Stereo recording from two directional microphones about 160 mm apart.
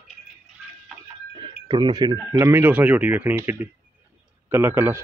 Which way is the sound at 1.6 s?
25° right (ahead or behind).